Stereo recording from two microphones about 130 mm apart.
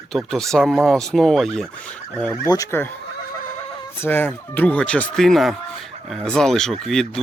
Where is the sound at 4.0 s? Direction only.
15° left (ahead or behind).